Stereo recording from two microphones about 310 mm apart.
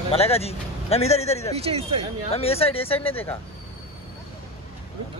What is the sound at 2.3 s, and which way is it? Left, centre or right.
Speech, centre.